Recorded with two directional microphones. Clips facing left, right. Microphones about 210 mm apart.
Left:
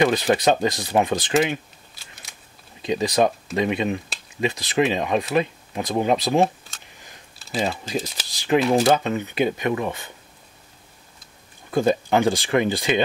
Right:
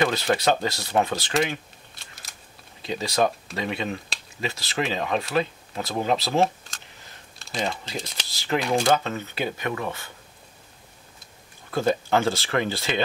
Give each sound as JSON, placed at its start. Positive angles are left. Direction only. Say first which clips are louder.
{"t": 0.0, "sound": "speech", "louder": "left 4 dB", "side_deg": 20}
{"t": 2.8, "sound": "speech", "louder": "left 4 dB", "side_deg": 20}
{"t": 7.3, "sound": "typing", "louder": "left 5 dB", "side_deg": 0}
{"t": 8.3, "sound": "speech", "louder": "left 6 dB", "side_deg": 15}
{"t": 8.5, "sound": "speech", "louder": "left 5 dB", "side_deg": 5}
{"t": 8.9, "sound": "speech", "louder": "left 3 dB", "side_deg": 15}
{"t": 11.7, "sound": "speech", "louder": "left 3 dB", "side_deg": 15}